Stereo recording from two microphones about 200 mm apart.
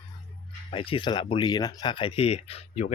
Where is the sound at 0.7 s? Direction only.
25° left (ahead or behind).